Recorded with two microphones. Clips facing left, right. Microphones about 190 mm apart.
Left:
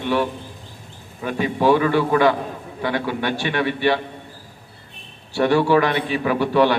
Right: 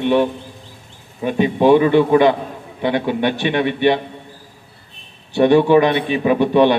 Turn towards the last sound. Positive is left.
turn(degrees=-20)  # may be behind; listen again after turning